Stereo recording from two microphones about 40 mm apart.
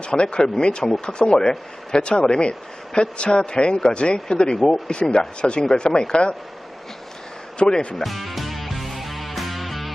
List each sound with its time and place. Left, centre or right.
0.0 s a man's voice: left
7.6 s a man's voice: left
8.0 s music: centre